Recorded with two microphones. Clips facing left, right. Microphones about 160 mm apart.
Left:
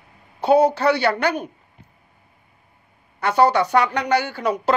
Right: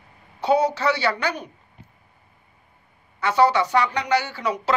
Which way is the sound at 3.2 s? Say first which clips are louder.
Left 2 dB; 55° left (ahead or behind).